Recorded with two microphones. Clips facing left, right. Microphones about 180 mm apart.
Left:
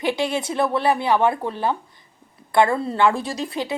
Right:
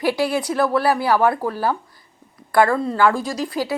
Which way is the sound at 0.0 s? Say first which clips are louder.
Right 2 dB; 20° left (ahead or behind).